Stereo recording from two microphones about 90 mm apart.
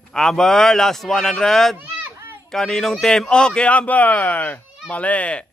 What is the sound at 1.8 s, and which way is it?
Children playing, 25° right (ahead or behind).